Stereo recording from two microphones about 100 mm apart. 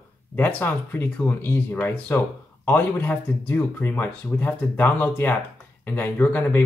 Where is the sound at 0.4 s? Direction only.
20° left (ahead or behind).